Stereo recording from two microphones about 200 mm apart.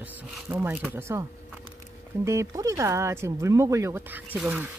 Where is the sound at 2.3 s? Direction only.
15° right (ahead or behind).